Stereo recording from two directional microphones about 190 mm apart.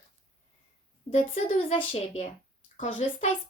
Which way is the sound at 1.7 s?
30° left (ahead or behind).